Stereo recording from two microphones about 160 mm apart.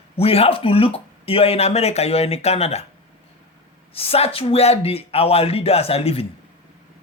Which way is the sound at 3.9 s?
35° left (ahead or behind).